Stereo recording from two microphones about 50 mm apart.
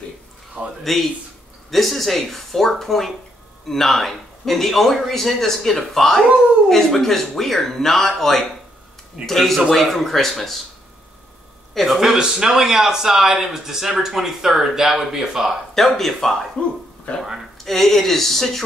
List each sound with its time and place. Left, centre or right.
0.6 s speech: right
1.7 s speech: centre
11.7 s speech: centre
12.2 s speech: centre
15.7 s speech: centre